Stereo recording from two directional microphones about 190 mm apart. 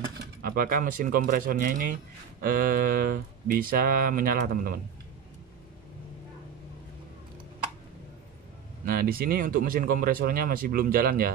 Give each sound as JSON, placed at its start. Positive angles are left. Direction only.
{"t": 0.4, "sound": "speech", "side_deg": -50}
{"t": 8.8, "sound": "speech", "side_deg": -50}